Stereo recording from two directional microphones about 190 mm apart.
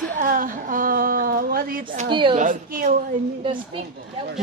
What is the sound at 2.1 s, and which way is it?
Speech, 25° right (ahead or behind).